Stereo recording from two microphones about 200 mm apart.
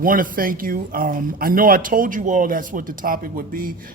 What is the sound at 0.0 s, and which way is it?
Speech, 45° right (ahead or behind).